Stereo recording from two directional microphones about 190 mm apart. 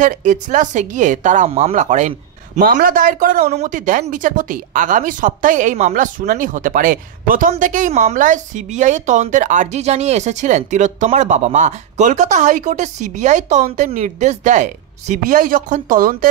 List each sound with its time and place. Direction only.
0.0 s a woman's voice: 40° right (ahead or behind)